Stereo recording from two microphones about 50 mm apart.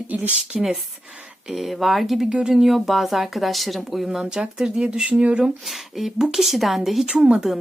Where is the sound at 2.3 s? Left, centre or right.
Centre.